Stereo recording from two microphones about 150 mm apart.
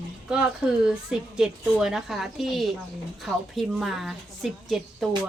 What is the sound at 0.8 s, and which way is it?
A woman's voice, 5° right (ahead or behind).